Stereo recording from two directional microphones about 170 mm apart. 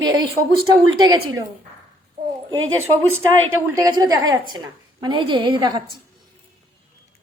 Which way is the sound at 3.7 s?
20° right (ahead or behind).